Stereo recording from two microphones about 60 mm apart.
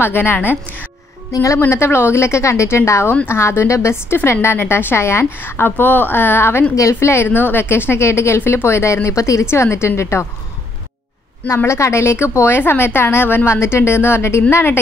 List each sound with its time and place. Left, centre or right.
0.0 s a woman's voice: left
1.3 s a woman's voice: left
1.6 s a woman's voice: left
6.7 s a woman's voice: left
11.4 s a woman's voice: left